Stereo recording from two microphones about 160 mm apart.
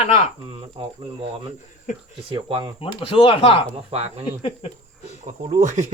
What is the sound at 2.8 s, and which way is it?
Speech, 35° left (ahead or behind).